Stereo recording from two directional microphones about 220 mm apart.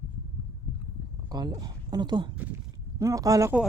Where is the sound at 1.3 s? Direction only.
20° right (ahead or behind).